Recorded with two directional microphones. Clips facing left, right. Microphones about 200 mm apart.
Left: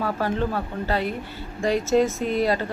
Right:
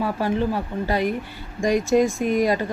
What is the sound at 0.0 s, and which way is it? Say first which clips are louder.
Speech: right 2 dB; 15° right (ahead or behind).